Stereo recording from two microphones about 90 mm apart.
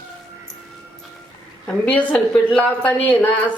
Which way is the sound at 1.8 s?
15° left (ahead or behind).